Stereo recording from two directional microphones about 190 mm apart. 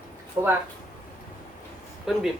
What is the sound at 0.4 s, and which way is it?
Speech, 20° right (ahead or behind).